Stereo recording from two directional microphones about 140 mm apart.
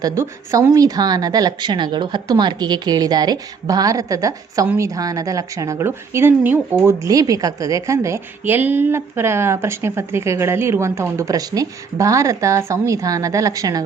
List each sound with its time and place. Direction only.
0.0 s a woman's voice: 20° right (ahead or behind)